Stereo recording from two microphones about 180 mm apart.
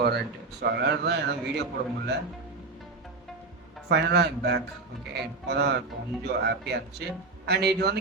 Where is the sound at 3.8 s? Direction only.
65° right (ahead or behind).